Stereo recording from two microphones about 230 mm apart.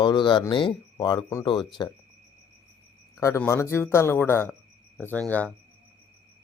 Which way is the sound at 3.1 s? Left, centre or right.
Centre.